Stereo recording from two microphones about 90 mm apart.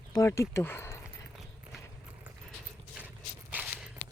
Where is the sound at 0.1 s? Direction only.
35° left (ahead or behind).